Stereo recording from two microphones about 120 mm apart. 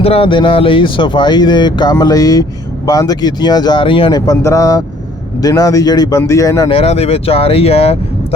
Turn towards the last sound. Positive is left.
turn(degrees=55)  # may be behind; listen again after turning